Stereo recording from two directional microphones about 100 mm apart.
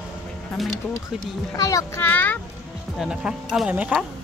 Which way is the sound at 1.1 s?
5° right (ahead or behind).